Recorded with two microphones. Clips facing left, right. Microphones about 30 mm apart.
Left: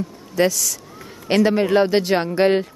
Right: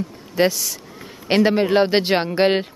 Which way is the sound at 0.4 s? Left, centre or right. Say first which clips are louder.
Even; right.